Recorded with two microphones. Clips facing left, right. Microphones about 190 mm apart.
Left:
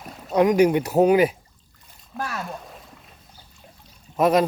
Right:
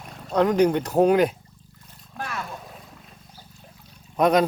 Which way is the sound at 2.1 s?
Centre (ahead or behind).